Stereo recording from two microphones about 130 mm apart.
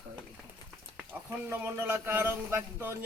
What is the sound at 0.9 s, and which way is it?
A man's voice, 15° right (ahead or behind).